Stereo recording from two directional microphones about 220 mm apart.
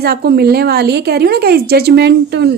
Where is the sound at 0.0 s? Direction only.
45° right (ahead or behind).